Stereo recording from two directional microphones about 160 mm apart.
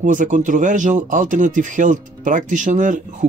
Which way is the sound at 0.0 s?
50° right (ahead or behind).